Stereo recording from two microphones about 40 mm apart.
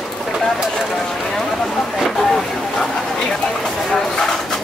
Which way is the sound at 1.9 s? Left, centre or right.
Centre.